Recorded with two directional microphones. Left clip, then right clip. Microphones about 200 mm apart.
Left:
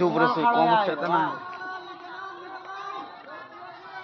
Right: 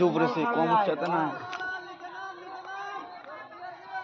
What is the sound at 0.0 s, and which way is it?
Speech, 35° right (ahead or behind).